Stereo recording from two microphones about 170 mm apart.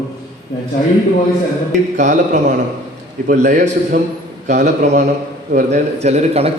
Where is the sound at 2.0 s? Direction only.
45° right (ahead or behind).